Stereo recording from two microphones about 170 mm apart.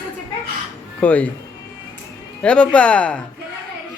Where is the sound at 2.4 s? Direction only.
5° left (ahead or behind).